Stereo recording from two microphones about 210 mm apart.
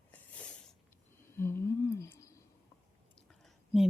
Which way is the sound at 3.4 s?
Centre (ahead or behind).